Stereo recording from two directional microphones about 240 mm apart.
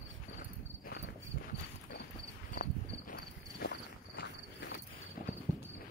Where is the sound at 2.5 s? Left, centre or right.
Left.